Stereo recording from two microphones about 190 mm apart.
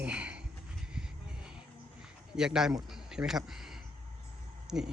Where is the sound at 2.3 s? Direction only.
5° right (ahead or behind).